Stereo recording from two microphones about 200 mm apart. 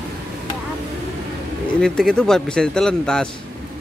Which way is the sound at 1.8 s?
5° left (ahead or behind).